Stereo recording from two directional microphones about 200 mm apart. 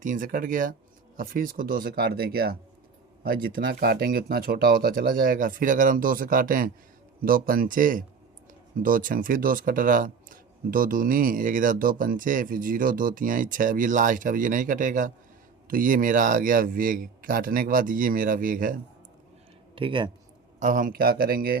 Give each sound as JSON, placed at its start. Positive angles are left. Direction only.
{"t": 0.0, "sound": "speech", "side_deg": -40}
{"t": 19.7, "sound": "speech", "side_deg": -25}
{"t": 20.6, "sound": "speech", "side_deg": -40}